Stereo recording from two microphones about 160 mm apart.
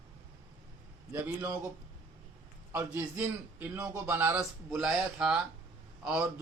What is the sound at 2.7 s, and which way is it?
A man's voice, 15° right (ahead or behind).